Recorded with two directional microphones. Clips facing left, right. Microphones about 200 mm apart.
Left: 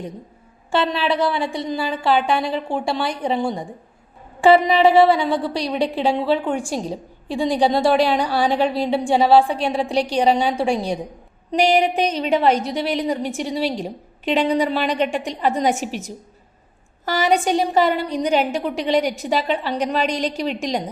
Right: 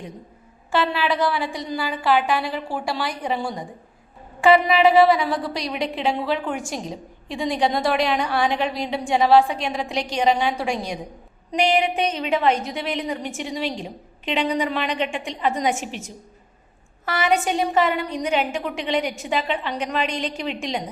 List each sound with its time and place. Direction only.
0.7 s a woman's voice: 30° left (ahead or behind)